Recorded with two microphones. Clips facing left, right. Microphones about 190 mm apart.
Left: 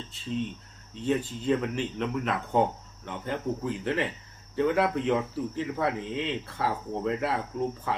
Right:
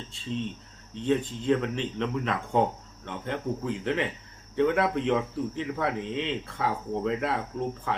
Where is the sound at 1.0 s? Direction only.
5° left (ahead or behind).